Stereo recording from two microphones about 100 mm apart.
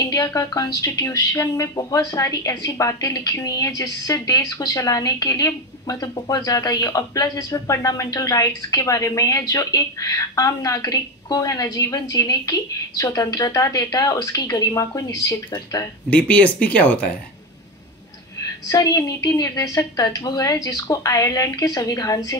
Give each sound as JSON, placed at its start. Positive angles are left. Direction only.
{"t": 0.0, "sound": "speech", "side_deg": 35}
{"t": 16.1, "sound": "speech", "side_deg": 15}
{"t": 18.4, "sound": "speech", "side_deg": 35}